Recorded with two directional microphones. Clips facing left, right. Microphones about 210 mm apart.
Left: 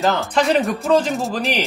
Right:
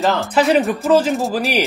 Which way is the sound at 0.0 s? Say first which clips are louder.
Right 2 dB; centre (ahead or behind).